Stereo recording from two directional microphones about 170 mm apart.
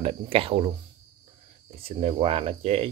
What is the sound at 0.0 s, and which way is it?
Speech, 35° right (ahead or behind).